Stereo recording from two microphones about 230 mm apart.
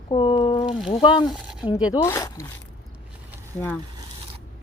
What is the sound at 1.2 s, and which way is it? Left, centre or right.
Speech, centre.